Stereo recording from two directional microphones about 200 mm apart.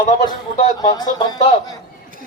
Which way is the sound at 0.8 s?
20° left (ahead or behind).